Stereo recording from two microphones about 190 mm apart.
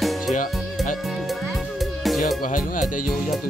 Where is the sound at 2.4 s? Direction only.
45° left (ahead or behind).